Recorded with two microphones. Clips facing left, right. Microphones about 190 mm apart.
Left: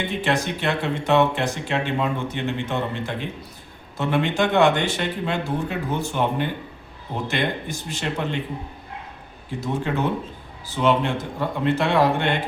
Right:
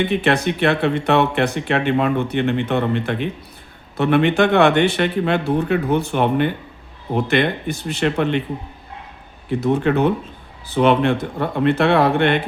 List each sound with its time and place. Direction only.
0.1 s speech: 60° right (ahead or behind)
9.5 s speech: 65° right (ahead or behind)